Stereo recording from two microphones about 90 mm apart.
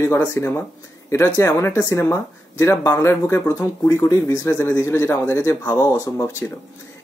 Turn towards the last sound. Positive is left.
turn(degrees=35)  # may be behind; listen again after turning